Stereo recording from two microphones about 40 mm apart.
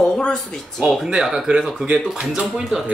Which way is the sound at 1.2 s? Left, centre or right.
Centre.